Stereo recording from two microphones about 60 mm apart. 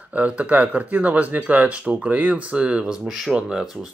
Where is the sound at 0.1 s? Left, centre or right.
Right.